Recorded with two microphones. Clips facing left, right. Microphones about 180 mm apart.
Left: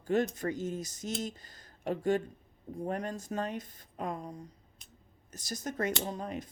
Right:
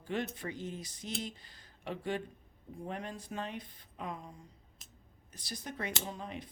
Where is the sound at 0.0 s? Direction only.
45° left (ahead or behind).